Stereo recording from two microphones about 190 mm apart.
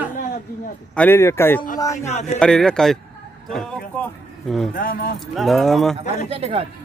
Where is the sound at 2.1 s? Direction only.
35° left (ahead or behind).